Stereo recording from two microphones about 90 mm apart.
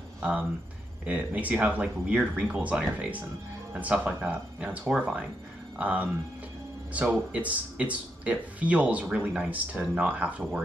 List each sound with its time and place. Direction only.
0.2 s speech: 15° right (ahead or behind)